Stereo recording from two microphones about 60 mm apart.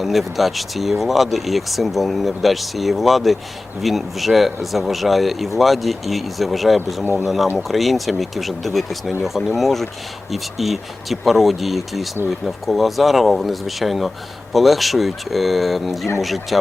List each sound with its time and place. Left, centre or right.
0.0 s speech: centre
7.0 s speech: right
7.5 s speech: centre